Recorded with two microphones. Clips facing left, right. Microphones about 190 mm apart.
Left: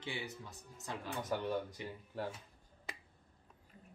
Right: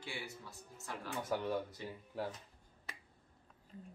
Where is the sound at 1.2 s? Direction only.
5° right (ahead or behind).